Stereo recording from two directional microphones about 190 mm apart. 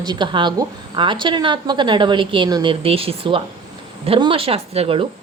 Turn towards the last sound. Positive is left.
turn(degrees=-30)  # may be behind; listen again after turning